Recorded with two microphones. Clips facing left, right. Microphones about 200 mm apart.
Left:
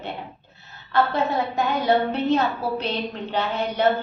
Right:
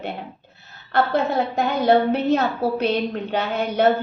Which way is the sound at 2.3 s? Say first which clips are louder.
Right 2 dB; 45° right (ahead or behind).